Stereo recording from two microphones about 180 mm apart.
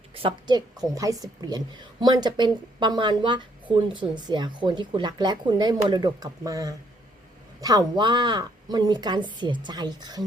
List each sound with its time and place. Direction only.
0.2 s speech: 25° right (ahead or behind)